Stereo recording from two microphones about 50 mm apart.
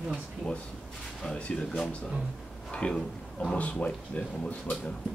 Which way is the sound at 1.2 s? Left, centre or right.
Centre.